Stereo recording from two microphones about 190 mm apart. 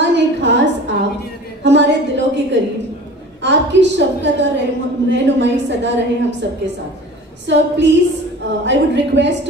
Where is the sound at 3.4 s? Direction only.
70° right (ahead or behind).